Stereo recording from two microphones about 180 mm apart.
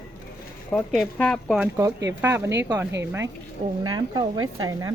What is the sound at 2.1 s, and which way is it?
A woman's voice, 15° right (ahead or behind).